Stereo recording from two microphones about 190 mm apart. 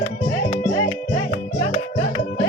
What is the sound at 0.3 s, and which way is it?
Music, 25° left (ahead or behind).